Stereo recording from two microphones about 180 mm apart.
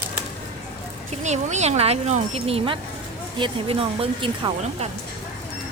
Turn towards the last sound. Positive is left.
turn(degrees=-30)  # may be behind; listen again after turning